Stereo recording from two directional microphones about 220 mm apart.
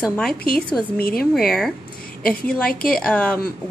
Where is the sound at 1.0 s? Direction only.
45° left (ahead or behind).